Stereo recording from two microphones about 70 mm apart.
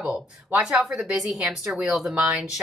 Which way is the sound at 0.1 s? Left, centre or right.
Centre.